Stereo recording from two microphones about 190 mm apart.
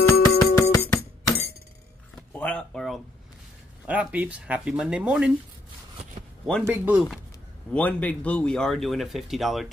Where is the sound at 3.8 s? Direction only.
5° right (ahead or behind).